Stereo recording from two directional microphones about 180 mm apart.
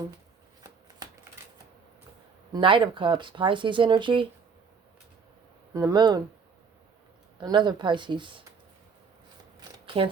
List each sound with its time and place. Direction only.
2.5 s speech: 30° right (ahead or behind)
5.7 s speech: 20° right (ahead or behind)
7.3 s speech: 25° right (ahead or behind)
9.6 s shuffling cards: 30° right (ahead or behind)